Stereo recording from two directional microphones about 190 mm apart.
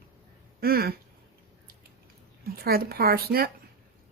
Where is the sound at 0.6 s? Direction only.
55° right (ahead or behind).